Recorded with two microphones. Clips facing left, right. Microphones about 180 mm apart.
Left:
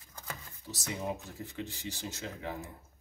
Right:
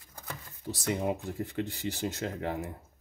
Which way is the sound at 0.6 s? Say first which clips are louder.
Right 7 dB; 60° right (ahead or behind).